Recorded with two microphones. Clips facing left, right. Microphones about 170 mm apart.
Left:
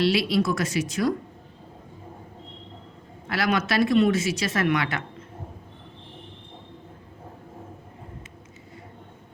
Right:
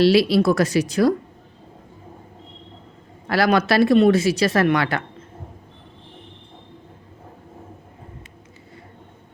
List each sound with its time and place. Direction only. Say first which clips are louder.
0.0 s speech: right 7 dB; 35° right (ahead or behind)
3.2 s speech: right 7 dB; 35° right (ahead or behind)